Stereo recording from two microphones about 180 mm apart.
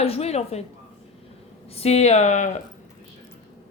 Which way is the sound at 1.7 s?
35° left (ahead or behind).